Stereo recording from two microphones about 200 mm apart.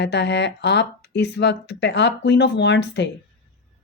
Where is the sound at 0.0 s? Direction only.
55° left (ahead or behind).